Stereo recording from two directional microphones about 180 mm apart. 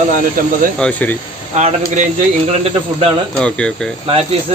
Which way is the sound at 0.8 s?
10° left (ahead or behind).